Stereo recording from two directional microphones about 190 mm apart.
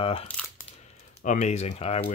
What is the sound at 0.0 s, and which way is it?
Speech, 30° left (ahead or behind).